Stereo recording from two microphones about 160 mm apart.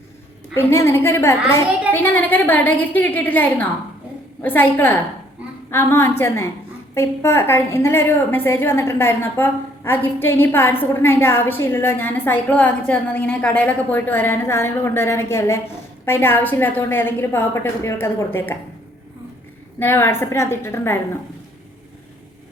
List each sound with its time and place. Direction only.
0.5 s a woman's voice: 15° left (ahead or behind)
19.8 s a woman's voice: 15° left (ahead or behind)